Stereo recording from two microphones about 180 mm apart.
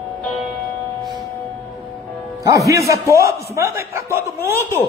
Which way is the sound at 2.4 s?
20° right (ahead or behind).